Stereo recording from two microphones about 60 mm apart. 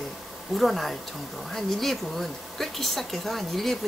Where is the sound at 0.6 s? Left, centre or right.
Centre.